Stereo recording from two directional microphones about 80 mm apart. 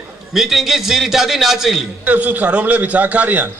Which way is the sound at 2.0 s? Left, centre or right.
Centre.